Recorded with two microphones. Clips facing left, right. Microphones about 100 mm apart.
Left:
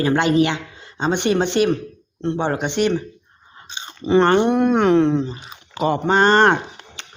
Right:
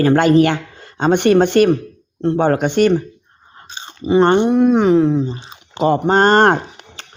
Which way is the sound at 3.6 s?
40° right (ahead or behind).